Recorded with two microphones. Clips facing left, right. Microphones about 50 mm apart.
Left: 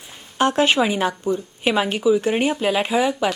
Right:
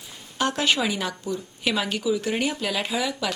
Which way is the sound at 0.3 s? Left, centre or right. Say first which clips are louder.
Left 6 dB; left.